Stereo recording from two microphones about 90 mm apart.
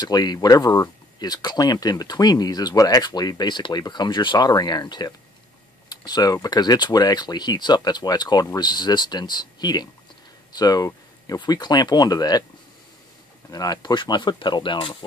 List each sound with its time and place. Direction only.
0.0 s speech: 45° left (ahead or behind)
13.5 s speech: 45° left (ahead or behind)
13.9 s speech: 55° left (ahead or behind)